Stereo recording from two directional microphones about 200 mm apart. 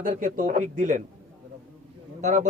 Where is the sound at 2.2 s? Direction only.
40° right (ahead or behind).